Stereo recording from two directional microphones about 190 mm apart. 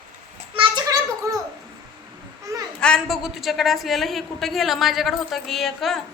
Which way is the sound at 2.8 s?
5° left (ahead or behind).